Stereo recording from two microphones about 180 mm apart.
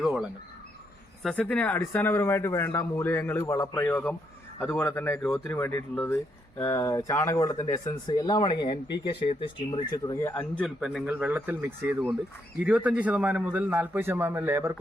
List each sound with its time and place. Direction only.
0.0 s bird: 5° right (ahead or behind)
1.2 s a man's voice: 5° left (ahead or behind); by 14.8 s 15° right (ahead or behind)